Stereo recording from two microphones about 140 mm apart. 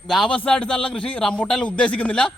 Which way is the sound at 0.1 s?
5° left (ahead or behind).